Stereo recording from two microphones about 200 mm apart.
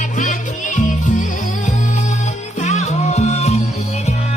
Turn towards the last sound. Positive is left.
turn(degrees=30)  # may be behind; listen again after turning